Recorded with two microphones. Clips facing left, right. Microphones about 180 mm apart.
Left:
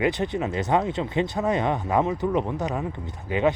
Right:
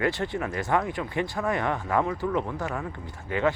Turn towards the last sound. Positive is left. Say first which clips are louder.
# left 3 dB
turn(degrees=20)  # may be behind; listen again after turning